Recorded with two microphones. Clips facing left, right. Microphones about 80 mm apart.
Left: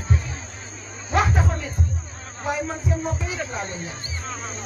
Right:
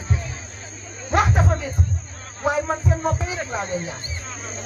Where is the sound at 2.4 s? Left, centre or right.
Right.